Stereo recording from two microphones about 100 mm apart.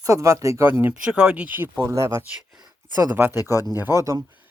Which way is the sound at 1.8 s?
30° right (ahead or behind).